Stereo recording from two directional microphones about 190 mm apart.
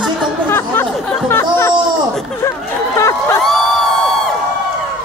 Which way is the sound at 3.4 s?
Centre (ahead or behind).